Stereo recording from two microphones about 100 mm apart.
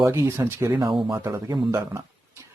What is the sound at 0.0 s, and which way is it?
Speech, 25° right (ahead or behind).